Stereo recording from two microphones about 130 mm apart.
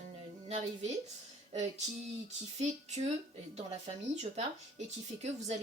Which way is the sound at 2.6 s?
60° right (ahead or behind).